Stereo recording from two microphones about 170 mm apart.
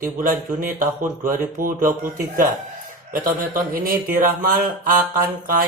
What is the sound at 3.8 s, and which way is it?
Speech, 55° right (ahead or behind).